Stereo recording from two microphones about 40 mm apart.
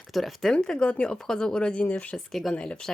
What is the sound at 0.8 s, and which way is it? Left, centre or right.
Speech, left.